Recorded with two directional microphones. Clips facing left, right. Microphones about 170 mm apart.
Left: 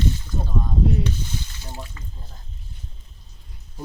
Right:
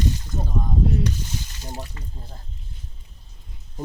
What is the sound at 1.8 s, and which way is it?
Speech, 35° right (ahead or behind).